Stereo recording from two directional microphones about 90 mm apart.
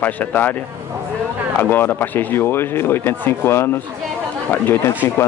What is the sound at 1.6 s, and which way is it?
Speech, 20° left (ahead or behind).